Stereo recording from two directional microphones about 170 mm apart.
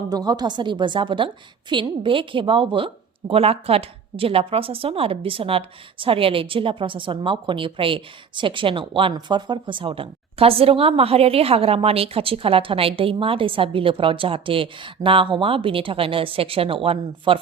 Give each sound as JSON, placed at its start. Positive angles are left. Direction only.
{"t": 0.1, "sound": "a woman's voice", "side_deg": -25}